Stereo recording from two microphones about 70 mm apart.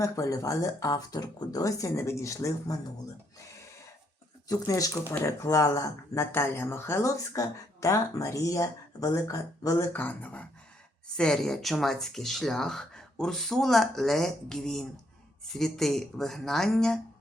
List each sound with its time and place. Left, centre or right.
0.0 s speech: left
1.9 s speech: left
4.4 s speech: left
5.2 s speech: left
6.3 s speech: left
9.9 s speech: left
11.2 s speech: centre